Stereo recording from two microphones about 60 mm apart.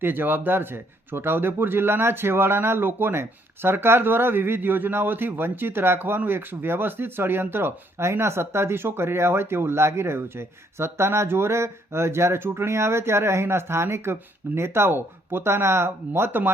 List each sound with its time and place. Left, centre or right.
0.0 s speech: right